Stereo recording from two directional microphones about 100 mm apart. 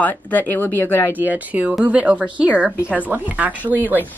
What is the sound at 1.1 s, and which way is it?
Speech, 20° right (ahead or behind).